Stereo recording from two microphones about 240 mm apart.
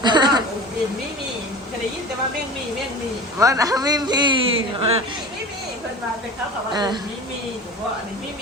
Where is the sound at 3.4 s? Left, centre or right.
Centre.